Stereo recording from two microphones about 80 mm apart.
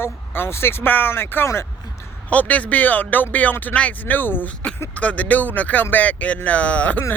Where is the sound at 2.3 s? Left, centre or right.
Centre.